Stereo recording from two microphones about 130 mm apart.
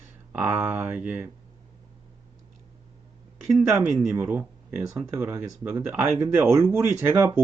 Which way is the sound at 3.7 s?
25° right (ahead or behind).